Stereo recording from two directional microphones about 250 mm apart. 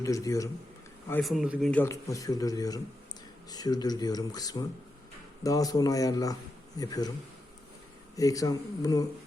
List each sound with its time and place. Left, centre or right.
0.0 s speech: centre
8.1 s speech: centre